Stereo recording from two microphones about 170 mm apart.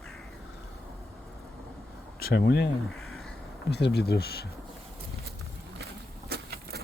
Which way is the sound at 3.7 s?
75° left (ahead or behind).